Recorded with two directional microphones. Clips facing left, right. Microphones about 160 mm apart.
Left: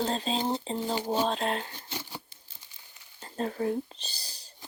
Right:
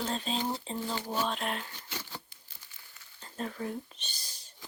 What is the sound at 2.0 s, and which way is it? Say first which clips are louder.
Tearing: left 1 dB; 15° left (ahead or behind).